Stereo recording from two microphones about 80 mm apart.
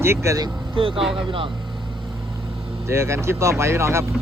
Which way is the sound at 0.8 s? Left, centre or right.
Right.